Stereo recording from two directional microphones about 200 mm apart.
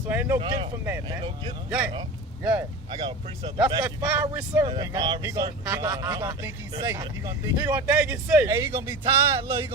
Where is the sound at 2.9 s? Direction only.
25° right (ahead or behind).